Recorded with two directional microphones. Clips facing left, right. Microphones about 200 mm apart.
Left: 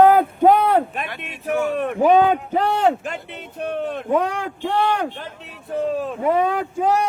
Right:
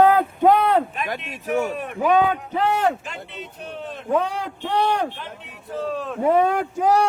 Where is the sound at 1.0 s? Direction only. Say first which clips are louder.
Even; 40° right (ahead or behind).